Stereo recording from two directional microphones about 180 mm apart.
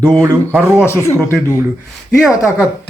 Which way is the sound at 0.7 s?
15° left (ahead or behind).